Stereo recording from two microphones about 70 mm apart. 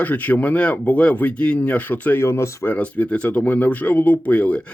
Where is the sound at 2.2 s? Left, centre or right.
Left.